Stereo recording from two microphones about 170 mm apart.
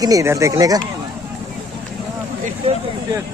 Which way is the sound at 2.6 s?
35° right (ahead or behind).